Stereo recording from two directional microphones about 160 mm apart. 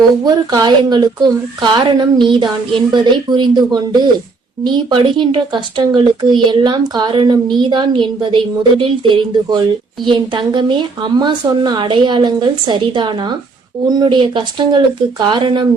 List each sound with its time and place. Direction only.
0.3 s a woman's voice: 25° right (ahead or behind)